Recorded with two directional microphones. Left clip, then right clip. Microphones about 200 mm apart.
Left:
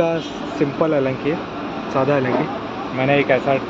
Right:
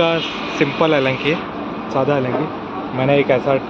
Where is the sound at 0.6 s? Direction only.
10° right (ahead or behind).